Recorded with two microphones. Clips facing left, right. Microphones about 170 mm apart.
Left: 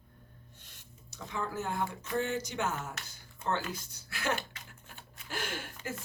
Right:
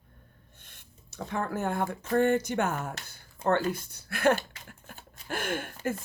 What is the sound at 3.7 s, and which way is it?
Speech, 55° right (ahead or behind).